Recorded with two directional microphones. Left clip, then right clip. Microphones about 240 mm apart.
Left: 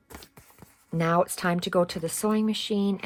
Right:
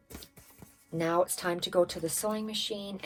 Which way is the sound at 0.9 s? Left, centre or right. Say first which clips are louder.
Left 4 dB; left.